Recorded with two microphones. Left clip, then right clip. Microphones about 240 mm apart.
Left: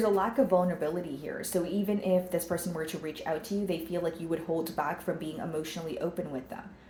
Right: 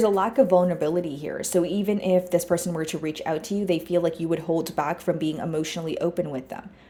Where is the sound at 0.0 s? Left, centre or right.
Right.